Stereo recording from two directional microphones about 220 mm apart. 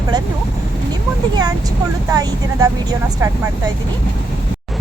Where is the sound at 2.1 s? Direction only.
15° right (ahead or behind).